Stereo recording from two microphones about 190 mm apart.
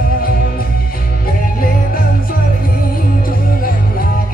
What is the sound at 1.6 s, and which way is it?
Music, 50° left (ahead or behind).